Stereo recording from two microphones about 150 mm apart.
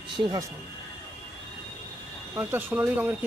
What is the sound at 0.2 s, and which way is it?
Speech, 30° right (ahead or behind).